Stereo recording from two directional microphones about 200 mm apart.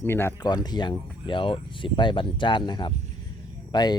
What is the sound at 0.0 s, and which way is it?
Speech, 10° left (ahead or behind).